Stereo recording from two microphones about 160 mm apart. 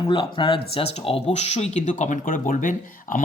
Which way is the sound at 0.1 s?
30° left (ahead or behind).